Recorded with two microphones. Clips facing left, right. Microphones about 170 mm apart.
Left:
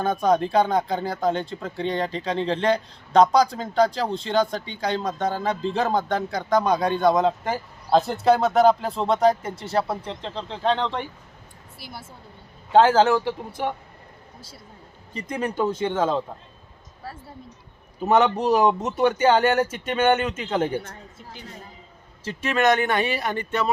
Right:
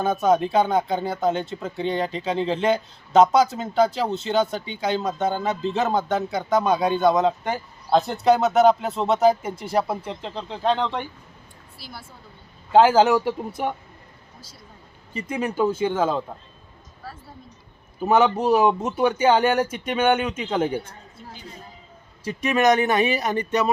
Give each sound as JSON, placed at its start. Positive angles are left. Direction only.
{"t": 0.0, "sound": "speech", "side_deg": -5}
{"t": 12.7, "sound": "speech", "side_deg": -10}
{"t": 15.1, "sound": "speech", "side_deg": -5}
{"t": 18.0, "sound": "speech", "side_deg": -5}
{"t": 22.2, "sound": "speech", "side_deg": -15}